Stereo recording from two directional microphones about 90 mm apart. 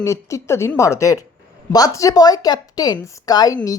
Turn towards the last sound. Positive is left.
turn(degrees=45)  # may be behind; listen again after turning